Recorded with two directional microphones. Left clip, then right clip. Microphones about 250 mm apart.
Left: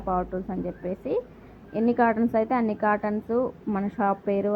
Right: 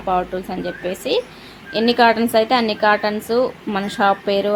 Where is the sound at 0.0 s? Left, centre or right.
Centre.